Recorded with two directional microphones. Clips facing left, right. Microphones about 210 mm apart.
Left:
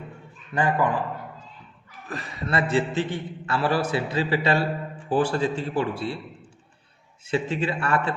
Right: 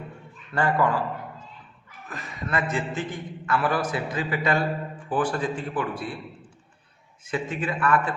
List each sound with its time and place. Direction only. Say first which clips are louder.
0.5 s a man's voice: even; 15° left (ahead or behind)
2.0 s a man's voice: left 3 dB; 35° left (ahead or behind)
7.3 s speech: left 3 dB; 30° left (ahead or behind)